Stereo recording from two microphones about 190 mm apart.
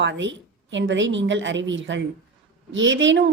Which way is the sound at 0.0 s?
70° right (ahead or behind).